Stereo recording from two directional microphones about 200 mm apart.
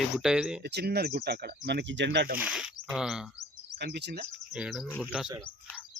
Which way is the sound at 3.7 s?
60° right (ahead or behind).